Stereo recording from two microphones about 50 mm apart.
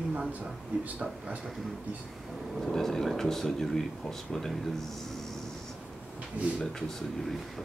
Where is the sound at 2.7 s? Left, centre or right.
Centre.